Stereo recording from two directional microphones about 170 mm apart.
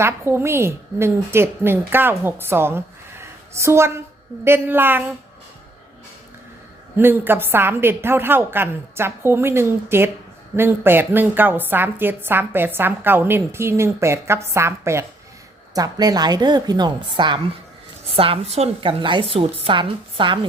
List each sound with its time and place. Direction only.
0.0 s a woman's voice: 15° right (ahead or behind)
6.9 s a woman's voice: 10° right (ahead or behind); by 20.4 s 30° right (ahead or behind)